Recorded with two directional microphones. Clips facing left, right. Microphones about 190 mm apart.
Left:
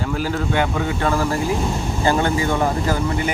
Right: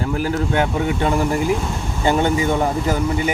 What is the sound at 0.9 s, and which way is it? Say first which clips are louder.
Speech: right 2 dB; 20° right (ahead or behind).